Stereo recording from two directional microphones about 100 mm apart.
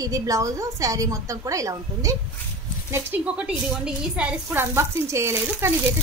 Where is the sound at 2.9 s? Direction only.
15° right (ahead or behind).